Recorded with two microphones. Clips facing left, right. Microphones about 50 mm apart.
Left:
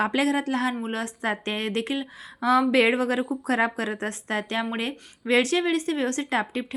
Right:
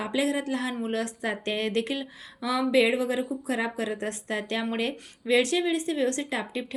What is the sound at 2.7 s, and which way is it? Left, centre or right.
A woman's voice, left.